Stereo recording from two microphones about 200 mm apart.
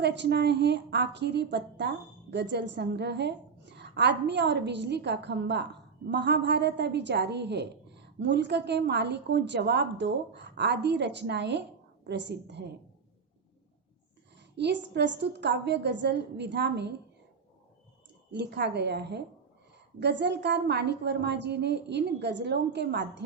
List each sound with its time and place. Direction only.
0.0 s a woman's voice: 60° right (ahead or behind)
14.5 s a woman's voice: 60° right (ahead or behind)
18.3 s a woman's voice: 60° right (ahead or behind)